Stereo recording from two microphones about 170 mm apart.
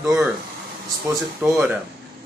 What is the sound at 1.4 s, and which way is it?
Speech, 10° right (ahead or behind).